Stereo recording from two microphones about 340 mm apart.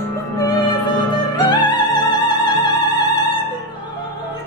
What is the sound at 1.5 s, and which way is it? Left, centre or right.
Opera, centre.